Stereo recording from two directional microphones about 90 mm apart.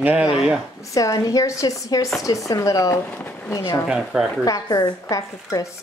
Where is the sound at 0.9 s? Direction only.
40° left (ahead or behind).